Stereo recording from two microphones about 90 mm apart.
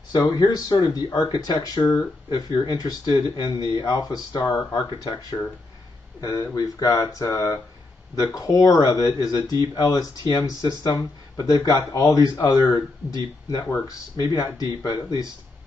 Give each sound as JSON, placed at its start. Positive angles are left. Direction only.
{"t": 0.3, "sound": "speech", "side_deg": 45}
{"t": 6.2, "sound": "speech", "side_deg": 35}
{"t": 13.8, "sound": "speech", "side_deg": 40}